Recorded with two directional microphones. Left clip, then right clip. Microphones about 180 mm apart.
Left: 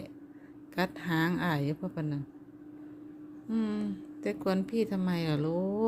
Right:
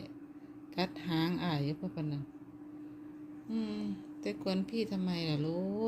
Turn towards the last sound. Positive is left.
turn(degrees=25)  # may be behind; listen again after turning